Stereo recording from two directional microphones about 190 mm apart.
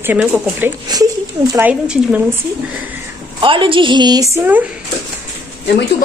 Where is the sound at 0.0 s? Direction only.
10° right (ahead or behind).